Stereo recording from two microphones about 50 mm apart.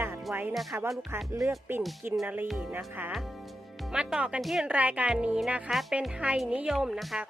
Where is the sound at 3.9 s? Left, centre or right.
Centre.